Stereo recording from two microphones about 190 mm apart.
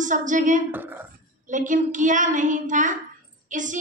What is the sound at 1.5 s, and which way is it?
A woman's voice, 40° right (ahead or behind).